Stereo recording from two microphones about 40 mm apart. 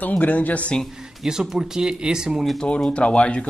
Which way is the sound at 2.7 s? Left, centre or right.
Left.